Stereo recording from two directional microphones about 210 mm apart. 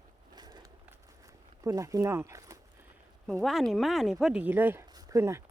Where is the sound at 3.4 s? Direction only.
Centre (ahead or behind).